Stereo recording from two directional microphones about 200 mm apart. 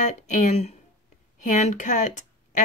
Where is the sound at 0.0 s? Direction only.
35° left (ahead or behind).